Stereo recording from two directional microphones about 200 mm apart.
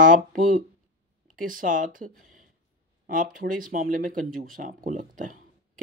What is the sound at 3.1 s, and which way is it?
Speech, 45° right (ahead or behind).